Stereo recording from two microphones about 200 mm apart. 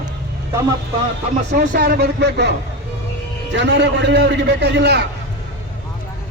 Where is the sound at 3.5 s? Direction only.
65° right (ahead or behind).